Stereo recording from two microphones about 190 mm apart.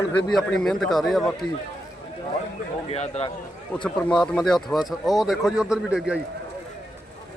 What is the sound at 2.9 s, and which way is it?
Speech, 35° left (ahead or behind).